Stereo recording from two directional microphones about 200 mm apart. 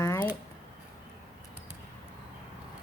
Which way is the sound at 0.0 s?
15° left (ahead or behind).